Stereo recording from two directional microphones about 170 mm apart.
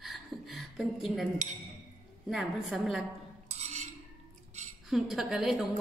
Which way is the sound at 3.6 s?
45° right (ahead or behind).